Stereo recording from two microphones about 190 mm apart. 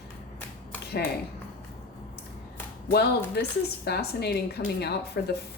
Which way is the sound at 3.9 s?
60° left (ahead or behind).